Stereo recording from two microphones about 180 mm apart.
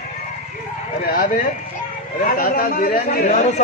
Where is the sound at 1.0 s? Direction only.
50° left (ahead or behind).